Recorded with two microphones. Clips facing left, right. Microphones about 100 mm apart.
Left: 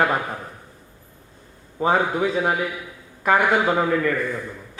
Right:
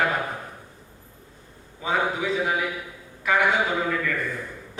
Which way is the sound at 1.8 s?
45° left (ahead or behind).